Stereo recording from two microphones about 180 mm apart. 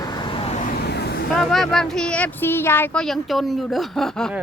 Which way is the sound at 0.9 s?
65° left (ahead or behind).